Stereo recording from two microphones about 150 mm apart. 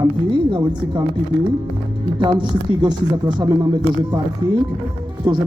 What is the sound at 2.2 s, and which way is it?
A man's voice, 30° right (ahead or behind).